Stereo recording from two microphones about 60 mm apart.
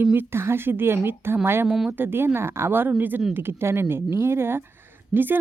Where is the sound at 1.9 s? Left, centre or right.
Right.